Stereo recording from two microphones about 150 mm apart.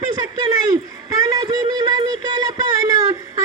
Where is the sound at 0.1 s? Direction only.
30° right (ahead or behind).